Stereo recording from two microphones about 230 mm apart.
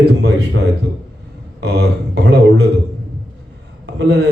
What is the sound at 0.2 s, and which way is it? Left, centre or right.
Speech, right.